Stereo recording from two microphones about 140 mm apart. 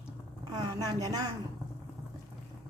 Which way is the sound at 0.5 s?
30° right (ahead or behind).